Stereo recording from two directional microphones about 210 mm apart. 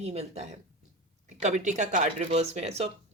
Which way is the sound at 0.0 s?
30° right (ahead or behind).